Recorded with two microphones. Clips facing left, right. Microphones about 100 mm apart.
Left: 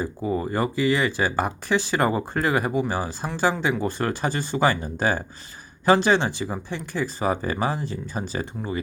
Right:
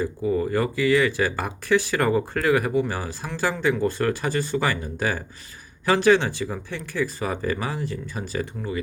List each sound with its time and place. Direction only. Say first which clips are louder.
0.0 s speech: right 2 dB; 20° left (ahead or behind)